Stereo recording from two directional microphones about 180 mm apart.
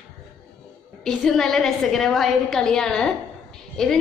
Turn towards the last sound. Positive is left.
turn(degrees=5)  # may be behind; listen again after turning